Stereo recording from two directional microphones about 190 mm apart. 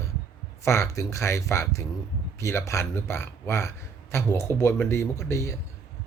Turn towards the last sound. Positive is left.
turn(degrees=15)  # may be behind; listen again after turning